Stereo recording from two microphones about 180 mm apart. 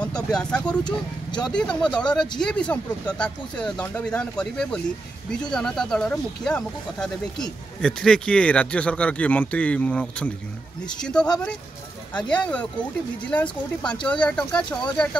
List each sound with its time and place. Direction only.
0.0 s speech: 5° left (ahead or behind)
0.8 s speech: 25° left (ahead or behind)
1.8 s speech: 5° left (ahead or behind)